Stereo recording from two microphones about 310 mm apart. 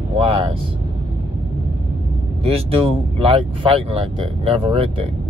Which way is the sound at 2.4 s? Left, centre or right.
Centre.